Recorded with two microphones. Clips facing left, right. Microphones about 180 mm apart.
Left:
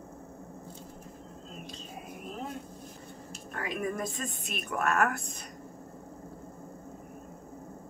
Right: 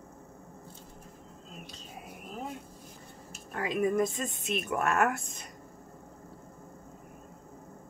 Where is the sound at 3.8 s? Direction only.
25° right (ahead or behind).